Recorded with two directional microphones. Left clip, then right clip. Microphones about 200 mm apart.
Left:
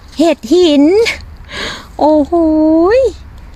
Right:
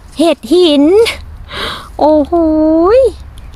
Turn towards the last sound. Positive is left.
turn(degrees=0)  # may be behind; listen again after turning